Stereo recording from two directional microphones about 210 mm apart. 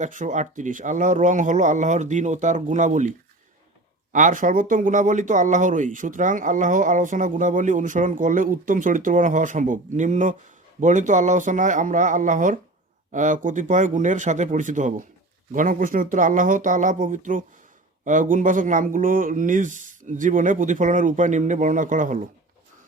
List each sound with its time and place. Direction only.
0.0 s speech: 35° right (ahead or behind)
4.1 s speech: 40° right (ahead or behind)